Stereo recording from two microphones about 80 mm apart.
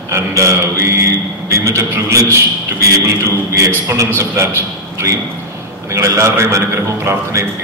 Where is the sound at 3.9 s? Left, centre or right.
Right.